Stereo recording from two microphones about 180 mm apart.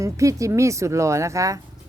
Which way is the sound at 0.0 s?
20° right (ahead or behind).